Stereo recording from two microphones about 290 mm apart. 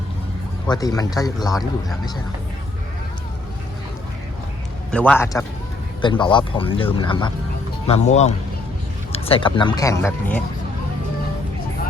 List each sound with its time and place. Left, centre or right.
0.7 s speech: centre
4.9 s a man's voice: centre